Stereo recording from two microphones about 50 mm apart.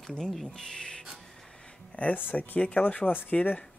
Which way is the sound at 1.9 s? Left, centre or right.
Left.